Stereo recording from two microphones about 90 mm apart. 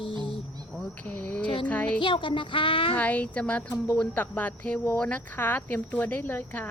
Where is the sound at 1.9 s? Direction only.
70° left (ahead or behind).